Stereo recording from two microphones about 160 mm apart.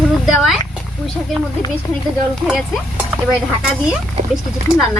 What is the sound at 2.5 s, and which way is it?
Stir, 5° right (ahead or behind).